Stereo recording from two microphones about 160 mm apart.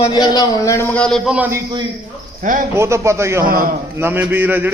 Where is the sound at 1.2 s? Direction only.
10° right (ahead or behind).